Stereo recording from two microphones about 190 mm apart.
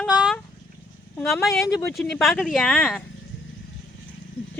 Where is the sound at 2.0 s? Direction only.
Centre (ahead or behind).